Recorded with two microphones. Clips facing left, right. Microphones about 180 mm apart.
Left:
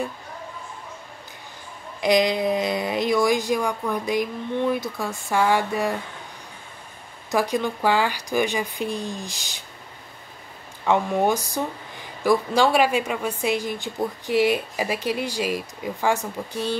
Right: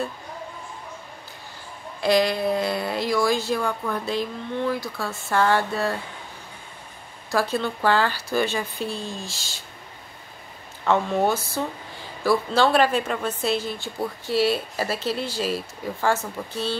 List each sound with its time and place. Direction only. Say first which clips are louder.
2.0 s speech: left 1 dB; 15° left (ahead or behind)
7.2 s speech: left 1 dB; 15° left (ahead or behind)
10.9 s speech: left 1 dB; 15° left (ahead or behind)